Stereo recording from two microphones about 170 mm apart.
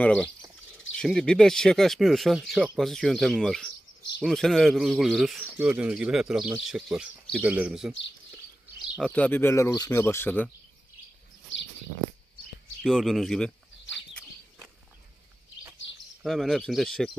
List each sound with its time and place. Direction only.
0.0 s speech: 5° left (ahead or behind)
8.9 s speech: 5° left (ahead or behind)
12.8 s speech: centre (ahead or behind)
16.2 s speech: centre (ahead or behind)